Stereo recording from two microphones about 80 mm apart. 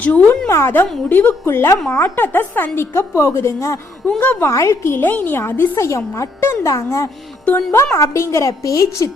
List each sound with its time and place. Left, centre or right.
0.0 s speech: centre
0.4 s a woman's voice: left
0.7 s a woman's voice: left
4.2 s speech: left
4.4 s a woman's voice: left
7.4 s speech: left
7.9 s a woman's voice: left